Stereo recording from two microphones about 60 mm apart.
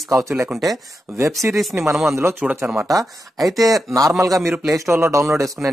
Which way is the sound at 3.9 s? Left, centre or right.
Right.